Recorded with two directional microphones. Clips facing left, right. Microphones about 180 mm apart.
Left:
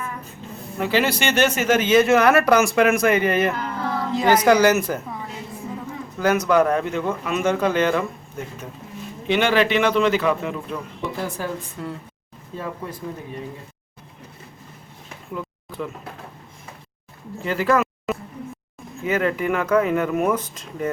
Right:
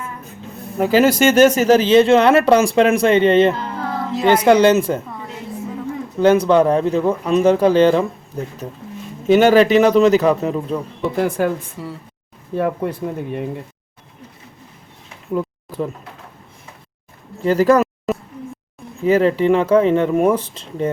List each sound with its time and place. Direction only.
0.8 s speech: 45° right (ahead or behind); by 4.9 s 25° right (ahead or behind)
6.1 s speech: 30° right (ahead or behind)
11.2 s speech: 55° right (ahead or behind)
11.8 s speech: 5° right (ahead or behind)
12.5 s speech: 65° right (ahead or behind)
15.3 s a sound: 40° right (ahead or behind)
17.4 s speech: 40° right (ahead or behind)